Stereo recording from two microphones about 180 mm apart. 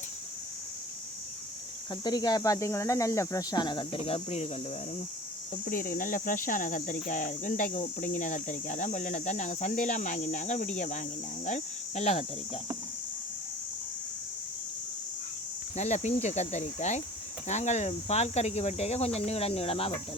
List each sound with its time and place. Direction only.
1.9 s speech: 20° left (ahead or behind)
5.6 s speech: 50° left (ahead or behind)
11.4 s cricket: 40° left (ahead or behind)
15.7 s cricket: 40° left (ahead or behind)